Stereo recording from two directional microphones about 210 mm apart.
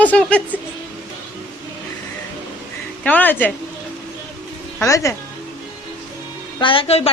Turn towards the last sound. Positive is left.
turn(degrees=30)  # may be behind; listen again after turning